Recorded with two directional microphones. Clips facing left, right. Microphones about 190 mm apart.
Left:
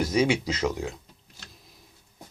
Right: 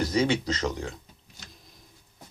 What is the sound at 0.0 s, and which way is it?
Speech, 10° left (ahead or behind).